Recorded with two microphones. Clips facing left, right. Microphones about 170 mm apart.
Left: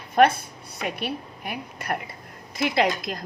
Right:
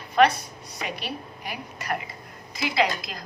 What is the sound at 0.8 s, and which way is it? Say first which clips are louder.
A woman's voice: left 4 dB; 55° left (ahead or behind).